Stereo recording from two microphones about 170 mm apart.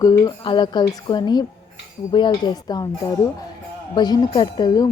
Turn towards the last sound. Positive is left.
turn(degrees=25)  # may be behind; listen again after turning